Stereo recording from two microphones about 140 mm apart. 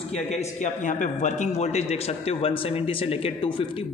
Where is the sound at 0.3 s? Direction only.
60° left (ahead or behind).